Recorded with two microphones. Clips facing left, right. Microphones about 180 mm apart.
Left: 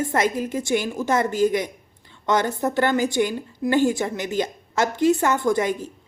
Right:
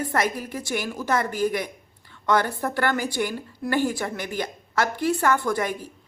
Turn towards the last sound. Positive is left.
turn(degrees=25)  # may be behind; listen again after turning